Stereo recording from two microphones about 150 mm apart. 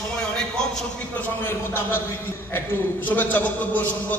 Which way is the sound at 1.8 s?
15° left (ahead or behind).